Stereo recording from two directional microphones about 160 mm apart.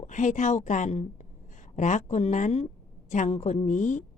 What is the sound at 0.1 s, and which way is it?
Speech, 50° left (ahead or behind).